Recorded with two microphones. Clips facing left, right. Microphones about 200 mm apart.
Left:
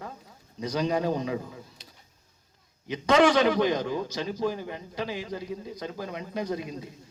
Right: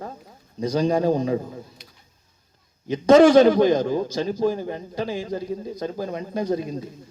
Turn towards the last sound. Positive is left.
turn(degrees=-35)  # may be behind; listen again after turning